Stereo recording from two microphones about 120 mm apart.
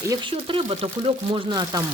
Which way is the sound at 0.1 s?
40° right (ahead or behind).